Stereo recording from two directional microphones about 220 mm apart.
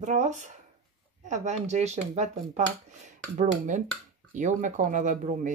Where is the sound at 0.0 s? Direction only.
35° right (ahead or behind).